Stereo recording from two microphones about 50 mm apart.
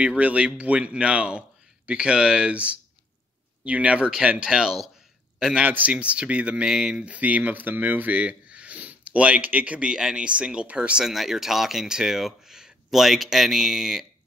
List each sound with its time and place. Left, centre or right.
0.0 s speech: right
5.7 s speech: right; by 7.1 s centre
7.1 s speech: right
8.2 s a sound: right
9.8 s speech: centre
11.1 s speech: centre